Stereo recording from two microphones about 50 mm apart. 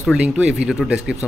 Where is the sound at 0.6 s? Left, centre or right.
Centre.